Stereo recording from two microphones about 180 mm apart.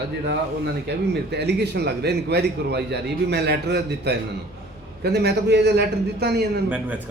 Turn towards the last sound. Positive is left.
turn(degrees=-10)  # may be behind; listen again after turning